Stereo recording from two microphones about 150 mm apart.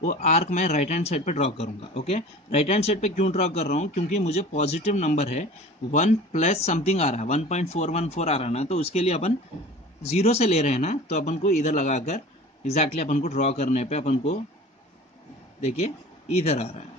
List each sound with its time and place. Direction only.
0.0 s speech: 55° left (ahead or behind)
15.6 s speech: 45° left (ahead or behind)